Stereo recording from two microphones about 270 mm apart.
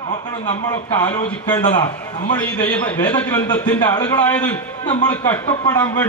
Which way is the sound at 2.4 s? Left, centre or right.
Centre.